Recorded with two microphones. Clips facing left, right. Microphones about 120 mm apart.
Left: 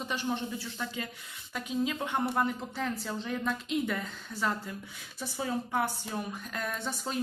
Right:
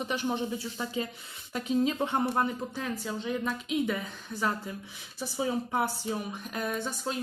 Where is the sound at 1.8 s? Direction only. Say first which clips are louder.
Right 4 dB; 30° right (ahead or behind).